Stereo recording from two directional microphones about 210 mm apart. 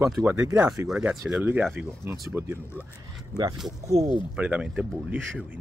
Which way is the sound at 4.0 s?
25° right (ahead or behind).